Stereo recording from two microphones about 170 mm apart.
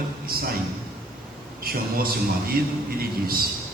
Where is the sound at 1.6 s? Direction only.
60° right (ahead or behind).